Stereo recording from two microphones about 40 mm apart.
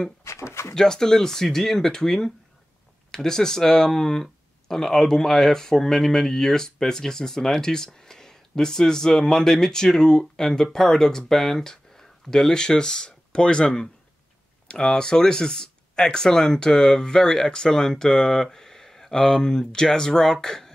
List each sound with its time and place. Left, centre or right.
0.7 s speech: centre